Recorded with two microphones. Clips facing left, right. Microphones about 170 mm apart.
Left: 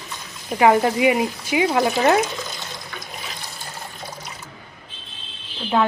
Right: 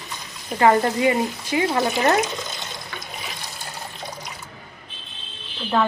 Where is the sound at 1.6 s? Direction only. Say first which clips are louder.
Left 2 dB; centre (ahead or behind).